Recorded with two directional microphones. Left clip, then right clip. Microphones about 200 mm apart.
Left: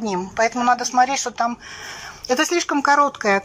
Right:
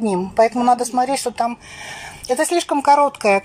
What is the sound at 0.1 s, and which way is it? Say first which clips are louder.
Speech: right 4 dB; 15° right (ahead or behind).